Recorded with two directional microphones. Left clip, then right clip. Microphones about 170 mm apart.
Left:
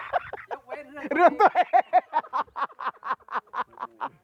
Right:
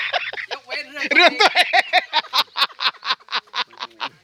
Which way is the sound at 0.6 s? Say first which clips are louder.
Right 9 dB; 25° right (ahead or behind).